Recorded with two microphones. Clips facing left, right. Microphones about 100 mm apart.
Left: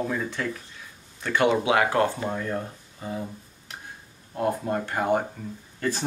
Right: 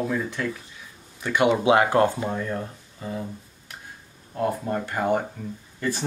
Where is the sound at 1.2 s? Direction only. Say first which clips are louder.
Right 2 dB; 20° right (ahead or behind).